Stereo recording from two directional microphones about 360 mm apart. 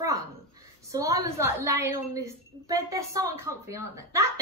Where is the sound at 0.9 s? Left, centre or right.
Centre.